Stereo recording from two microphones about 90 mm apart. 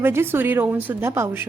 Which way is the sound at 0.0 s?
25° right (ahead or behind).